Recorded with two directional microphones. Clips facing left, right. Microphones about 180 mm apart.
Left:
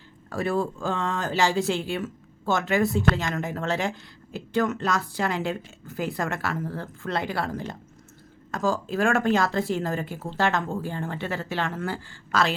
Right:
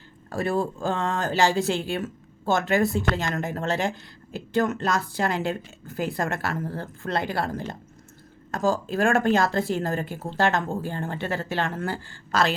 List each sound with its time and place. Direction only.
0.3 s speech: 35° right (ahead or behind)